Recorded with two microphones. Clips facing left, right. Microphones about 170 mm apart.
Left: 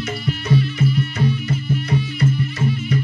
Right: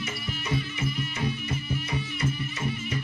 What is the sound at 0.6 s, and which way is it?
Music, 70° left (ahead or behind).